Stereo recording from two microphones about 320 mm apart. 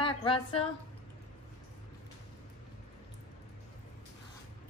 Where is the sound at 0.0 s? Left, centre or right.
Centre.